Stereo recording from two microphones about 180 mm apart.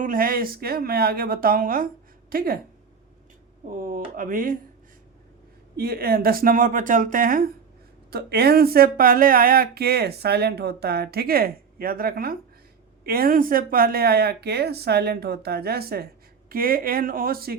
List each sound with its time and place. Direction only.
0.0 s speech: 50° right (ahead or behind)
3.7 s speech: 50° right (ahead or behind)
5.7 s speech: 60° right (ahead or behind)